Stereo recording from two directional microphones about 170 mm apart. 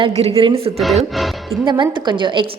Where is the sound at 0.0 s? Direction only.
35° right (ahead or behind).